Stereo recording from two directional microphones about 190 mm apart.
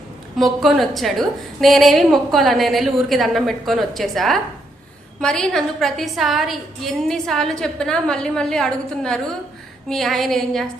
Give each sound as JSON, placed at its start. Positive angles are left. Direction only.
{"t": 0.6, "sound": "a woman's voice", "side_deg": 0}